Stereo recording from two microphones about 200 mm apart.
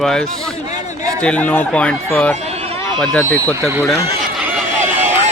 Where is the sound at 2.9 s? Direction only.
Centre (ahead or behind).